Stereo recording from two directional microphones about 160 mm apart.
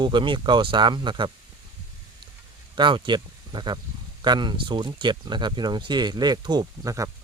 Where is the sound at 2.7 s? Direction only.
30° right (ahead or behind).